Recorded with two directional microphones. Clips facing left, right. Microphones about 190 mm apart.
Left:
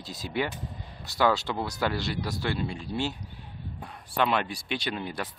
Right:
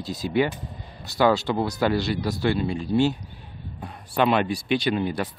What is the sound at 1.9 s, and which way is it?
Speech, 5° right (ahead or behind).